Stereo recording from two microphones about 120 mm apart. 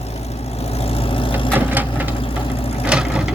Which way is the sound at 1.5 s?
15° right (ahead or behind).